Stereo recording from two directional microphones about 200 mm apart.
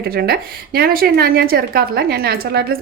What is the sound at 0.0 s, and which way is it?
Speech, 50° right (ahead or behind).